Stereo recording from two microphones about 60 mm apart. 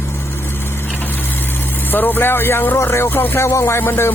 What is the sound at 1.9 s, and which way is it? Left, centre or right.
Speech, left.